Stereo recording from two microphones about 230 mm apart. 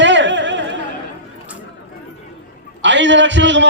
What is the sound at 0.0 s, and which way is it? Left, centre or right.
Music, right.